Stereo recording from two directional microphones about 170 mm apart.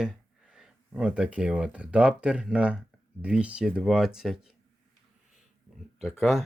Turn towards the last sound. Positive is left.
turn(degrees=0)  # may be behind; listen again after turning